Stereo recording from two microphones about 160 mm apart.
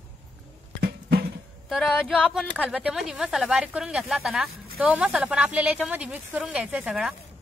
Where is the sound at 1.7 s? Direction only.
Centre (ahead or behind).